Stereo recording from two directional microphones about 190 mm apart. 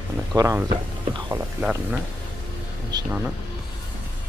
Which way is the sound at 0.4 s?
15° right (ahead or behind).